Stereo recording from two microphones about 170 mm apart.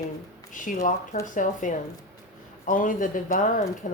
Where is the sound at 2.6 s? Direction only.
50° left (ahead or behind).